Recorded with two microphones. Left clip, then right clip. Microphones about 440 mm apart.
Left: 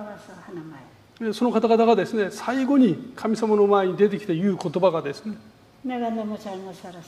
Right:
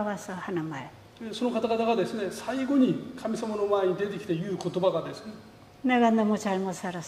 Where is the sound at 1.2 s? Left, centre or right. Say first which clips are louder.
Left 7 dB; left.